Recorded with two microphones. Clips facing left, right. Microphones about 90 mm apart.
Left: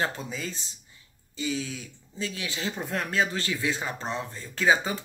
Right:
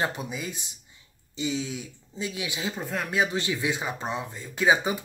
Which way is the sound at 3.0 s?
15° right (ahead or behind).